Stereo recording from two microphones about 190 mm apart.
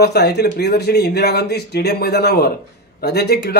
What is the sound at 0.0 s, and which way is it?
Speech, 60° left (ahead or behind).